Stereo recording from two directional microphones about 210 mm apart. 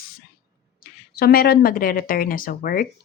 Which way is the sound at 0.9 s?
45° left (ahead or behind).